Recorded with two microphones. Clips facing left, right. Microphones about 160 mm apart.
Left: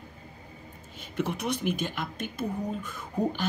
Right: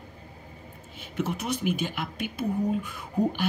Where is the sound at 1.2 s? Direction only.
5° right (ahead or behind).